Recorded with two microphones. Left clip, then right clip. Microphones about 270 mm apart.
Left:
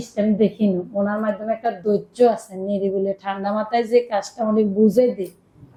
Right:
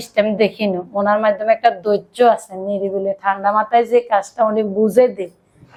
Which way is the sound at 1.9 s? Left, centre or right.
Right.